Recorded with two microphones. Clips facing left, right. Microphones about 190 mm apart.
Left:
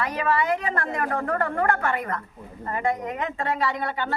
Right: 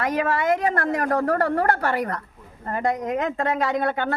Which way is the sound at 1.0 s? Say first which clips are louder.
Right 4 dB; 40° right (ahead or behind).